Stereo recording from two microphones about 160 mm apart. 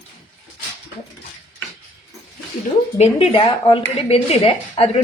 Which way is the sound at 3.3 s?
35° left (ahead or behind).